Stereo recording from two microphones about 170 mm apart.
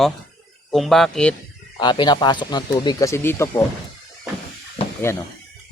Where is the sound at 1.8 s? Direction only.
25° left (ahead or behind).